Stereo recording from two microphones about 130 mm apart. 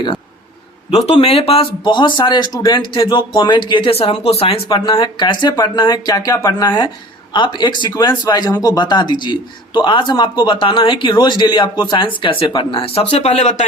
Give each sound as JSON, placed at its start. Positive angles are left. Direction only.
{"t": 0.9, "sound": "a man's voice", "side_deg": 50}